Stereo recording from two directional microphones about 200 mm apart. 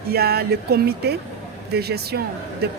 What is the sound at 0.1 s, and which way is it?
Speech, 50° right (ahead or behind).